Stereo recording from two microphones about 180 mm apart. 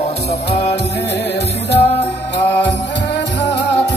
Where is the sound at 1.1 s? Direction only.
70° left (ahead or behind).